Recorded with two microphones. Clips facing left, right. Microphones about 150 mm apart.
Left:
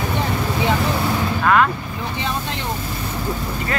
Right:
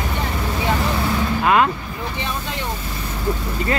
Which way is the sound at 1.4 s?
20° right (ahead or behind).